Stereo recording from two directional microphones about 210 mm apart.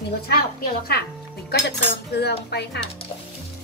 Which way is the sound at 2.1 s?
50° left (ahead or behind).